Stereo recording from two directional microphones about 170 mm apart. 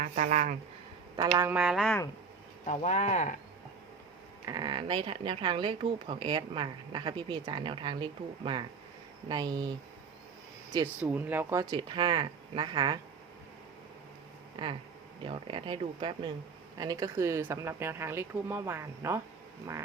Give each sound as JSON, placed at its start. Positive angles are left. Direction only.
{"t": 0.0, "sound": "speech", "side_deg": -45}
{"t": 1.3, "sound": "speech", "side_deg": -10}
{"t": 2.6, "sound": "speech", "side_deg": 45}
{"t": 4.4, "sound": "speech", "side_deg": -25}
{"t": 11.0, "sound": "speech", "side_deg": -10}
{"t": 11.7, "sound": "speech", "side_deg": -30}
{"t": 15.2, "sound": "speech", "side_deg": -30}